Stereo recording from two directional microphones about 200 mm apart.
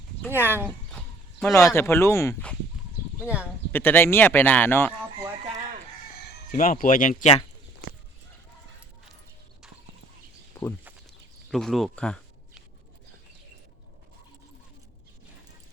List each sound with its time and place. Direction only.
0.3 s speech: 10° right (ahead or behind)
1.5 s speech: 15° left (ahead or behind)
3.2 s speech: 5° right (ahead or behind)
3.7 s speech: 10° left (ahead or behind)
6.5 s speech: 40° left (ahead or behind)
10.5 s a sound: 10° left (ahead or behind)
11.5 s speech: centre (ahead or behind)